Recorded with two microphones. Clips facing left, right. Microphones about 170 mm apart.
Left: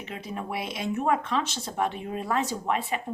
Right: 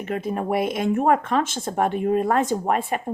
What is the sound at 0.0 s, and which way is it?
Speech, 50° right (ahead or behind).